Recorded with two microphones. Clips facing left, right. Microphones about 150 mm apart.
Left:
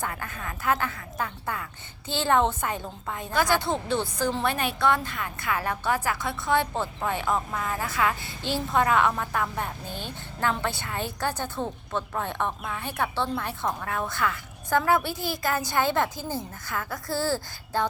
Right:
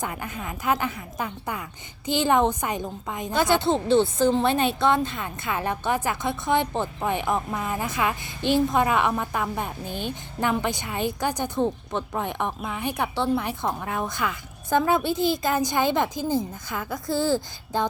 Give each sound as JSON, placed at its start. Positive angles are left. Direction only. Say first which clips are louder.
{"t": 0.0, "sound": "a woman's voice", "louder": "right 2 dB", "side_deg": -15}